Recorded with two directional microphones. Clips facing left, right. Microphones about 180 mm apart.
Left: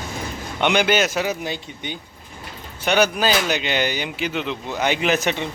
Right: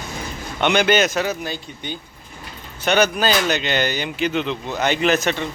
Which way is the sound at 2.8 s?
10° left (ahead or behind).